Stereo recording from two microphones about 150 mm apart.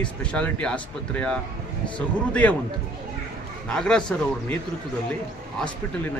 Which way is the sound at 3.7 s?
5° left (ahead or behind).